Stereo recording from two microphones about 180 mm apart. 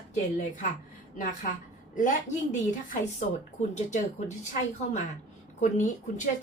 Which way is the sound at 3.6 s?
40° left (ahead or behind).